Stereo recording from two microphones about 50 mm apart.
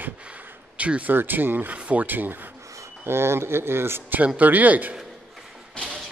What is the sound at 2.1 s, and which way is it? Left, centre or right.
Speech, right.